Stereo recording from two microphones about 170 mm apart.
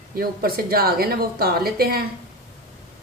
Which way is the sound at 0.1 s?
60° right (ahead or behind).